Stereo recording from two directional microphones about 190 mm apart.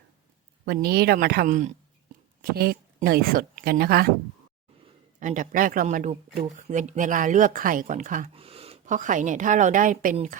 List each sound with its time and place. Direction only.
0.6 s a woman's voice: 55° right (ahead or behind); by 1.7 s 40° right (ahead or behind)
2.4 s a woman's voice: 55° right (ahead or behind)
5.2 s speech: 45° right (ahead or behind)
8.3 s a woman's voice: 30° right (ahead or behind)